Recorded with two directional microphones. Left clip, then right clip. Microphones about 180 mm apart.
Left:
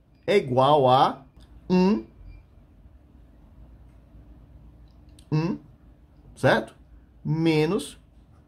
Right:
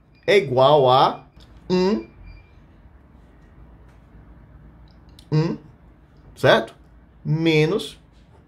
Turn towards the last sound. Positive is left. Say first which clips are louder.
# right 4 dB
turn(degrees=25)  # may be behind; listen again after turning